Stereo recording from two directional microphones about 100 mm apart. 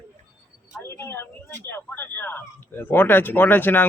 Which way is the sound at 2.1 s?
20° left (ahead or behind).